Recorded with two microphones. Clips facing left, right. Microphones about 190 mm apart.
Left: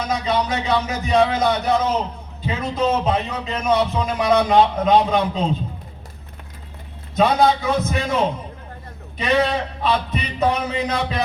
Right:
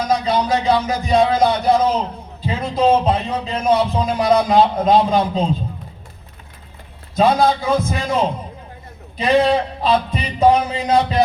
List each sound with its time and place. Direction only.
0.1 s a man's voice: 35° right (ahead or behind)
7.2 s a man's voice: 35° right (ahead or behind)